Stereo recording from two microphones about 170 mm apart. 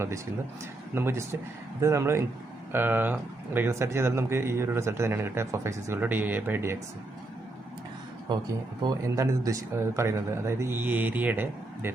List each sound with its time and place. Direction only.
0.9 s speech: 15° right (ahead or behind)
8.8 s speech: 20° right (ahead or behind)